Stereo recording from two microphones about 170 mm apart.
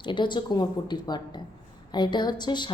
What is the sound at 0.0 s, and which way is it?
Speech, 25° left (ahead or behind).